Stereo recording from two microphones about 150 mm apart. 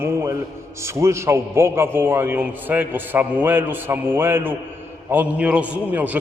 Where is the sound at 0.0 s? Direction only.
20° right (ahead or behind).